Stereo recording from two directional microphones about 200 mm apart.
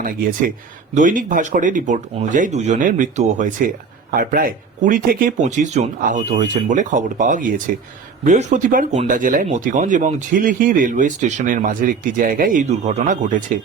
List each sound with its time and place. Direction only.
0.0 s speech: 45° right (ahead or behind)